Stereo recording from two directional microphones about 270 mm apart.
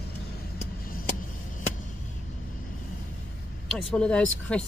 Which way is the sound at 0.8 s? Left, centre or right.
Left.